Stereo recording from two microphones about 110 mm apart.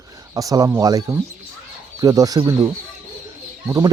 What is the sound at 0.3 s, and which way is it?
Speech, 35° right (ahead or behind).